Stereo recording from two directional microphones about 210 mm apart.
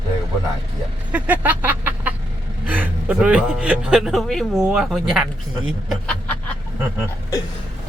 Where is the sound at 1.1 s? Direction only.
10° right (ahead or behind).